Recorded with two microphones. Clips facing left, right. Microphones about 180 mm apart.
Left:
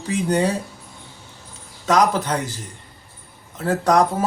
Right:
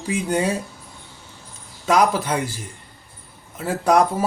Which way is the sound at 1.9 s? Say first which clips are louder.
Even; 10° right (ahead or behind).